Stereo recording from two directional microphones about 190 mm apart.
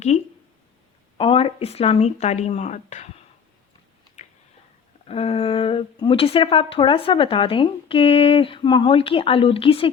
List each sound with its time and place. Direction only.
1.2 s speech: 30° left (ahead or behind)
5.0 s speech: 30° left (ahead or behind)